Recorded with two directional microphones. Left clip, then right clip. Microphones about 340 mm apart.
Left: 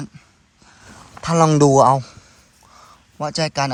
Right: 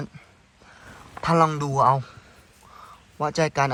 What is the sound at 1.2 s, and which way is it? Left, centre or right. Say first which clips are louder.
Speech: left 6 dB; centre.